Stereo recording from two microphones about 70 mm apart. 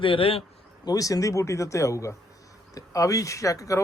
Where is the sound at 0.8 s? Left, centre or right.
Left.